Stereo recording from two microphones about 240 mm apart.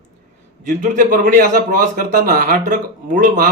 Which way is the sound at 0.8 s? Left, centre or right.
Right.